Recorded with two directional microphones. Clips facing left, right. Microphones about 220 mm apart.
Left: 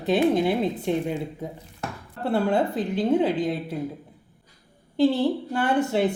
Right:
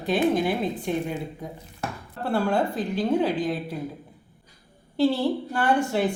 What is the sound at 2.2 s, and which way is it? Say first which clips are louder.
A woman's voice: left 1 dB; 20° left (ahead or behind).